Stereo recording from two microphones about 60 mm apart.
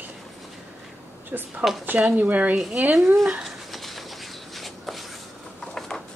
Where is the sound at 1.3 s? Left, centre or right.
Right.